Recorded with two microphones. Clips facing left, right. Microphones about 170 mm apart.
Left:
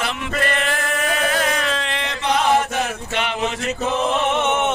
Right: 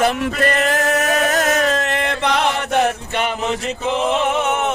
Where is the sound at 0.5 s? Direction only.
40° right (ahead or behind).